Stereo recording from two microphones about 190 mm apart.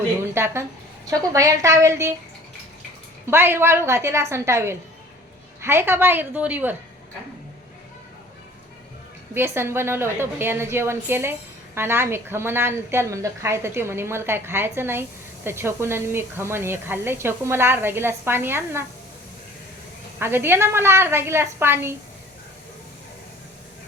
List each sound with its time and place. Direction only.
0.3 s a woman's voice: 15° right (ahead or behind)
3.2 s a woman's voice: 10° right (ahead or behind)
9.3 s a woman's voice: 15° right (ahead or behind)
20.1 s a woman's voice: 10° right (ahead or behind)